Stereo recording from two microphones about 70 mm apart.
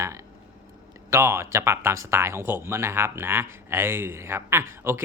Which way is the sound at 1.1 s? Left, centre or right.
Right.